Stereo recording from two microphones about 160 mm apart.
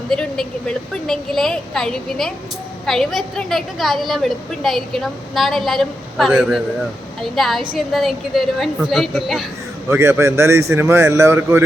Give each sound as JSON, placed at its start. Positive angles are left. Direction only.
{"t": 0.1, "sound": "a woman's voice", "side_deg": 5}
{"t": 9.9, "sound": "a man's voice", "side_deg": -15}